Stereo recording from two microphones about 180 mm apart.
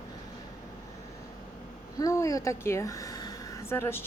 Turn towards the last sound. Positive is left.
turn(degrees=10)  # may be behind; listen again after turning